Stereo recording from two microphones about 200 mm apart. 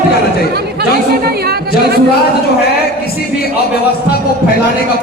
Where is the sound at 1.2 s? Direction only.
50° right (ahead or behind).